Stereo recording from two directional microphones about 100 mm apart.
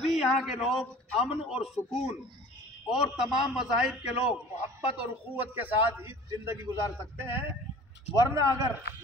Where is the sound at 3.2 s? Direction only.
5° right (ahead or behind); by 6.2 s 20° right (ahead or behind).